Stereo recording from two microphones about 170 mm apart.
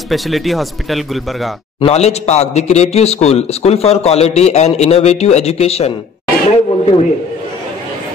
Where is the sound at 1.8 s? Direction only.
35° left (ahead or behind).